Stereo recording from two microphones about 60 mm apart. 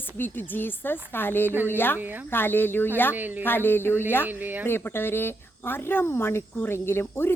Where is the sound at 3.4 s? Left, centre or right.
Left.